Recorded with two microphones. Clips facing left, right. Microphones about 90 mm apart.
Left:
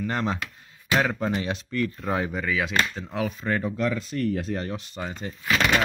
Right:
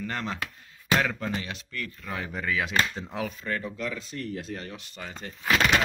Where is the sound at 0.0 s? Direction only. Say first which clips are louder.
Left 5 dB; 20° left (ahead or behind); by 2.2 s 35° left (ahead or behind).